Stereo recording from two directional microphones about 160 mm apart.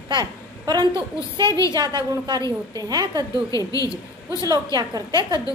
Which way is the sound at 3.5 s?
20° left (ahead or behind).